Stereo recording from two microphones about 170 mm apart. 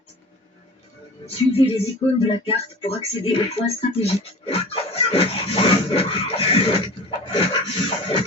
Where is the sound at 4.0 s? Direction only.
35° left (ahead or behind).